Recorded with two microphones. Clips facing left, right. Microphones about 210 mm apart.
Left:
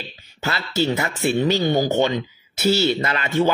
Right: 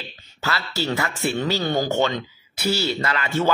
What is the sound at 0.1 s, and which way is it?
Speech, 15° left (ahead or behind).